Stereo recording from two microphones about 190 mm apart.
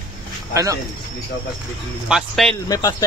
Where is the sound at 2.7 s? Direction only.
20° left (ahead or behind).